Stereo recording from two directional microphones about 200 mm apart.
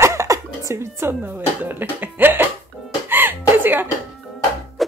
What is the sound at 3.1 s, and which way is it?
Chuckle, 10° right (ahead or behind).